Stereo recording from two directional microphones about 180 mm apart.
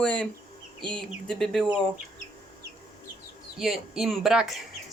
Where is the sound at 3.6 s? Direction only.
Centre (ahead or behind).